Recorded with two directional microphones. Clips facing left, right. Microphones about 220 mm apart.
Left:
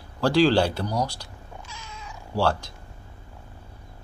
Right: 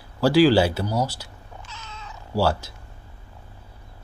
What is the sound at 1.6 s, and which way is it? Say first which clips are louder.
Cat: right 3 dB; 10° left (ahead or behind).